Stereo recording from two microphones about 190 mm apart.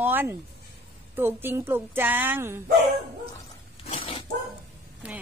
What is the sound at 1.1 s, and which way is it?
A woman's voice, 10° right (ahead or behind).